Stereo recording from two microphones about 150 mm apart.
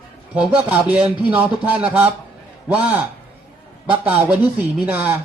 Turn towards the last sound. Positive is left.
turn(degrees=-10)  # may be behind; listen again after turning